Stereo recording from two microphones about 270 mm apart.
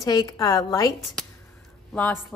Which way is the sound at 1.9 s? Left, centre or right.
Centre.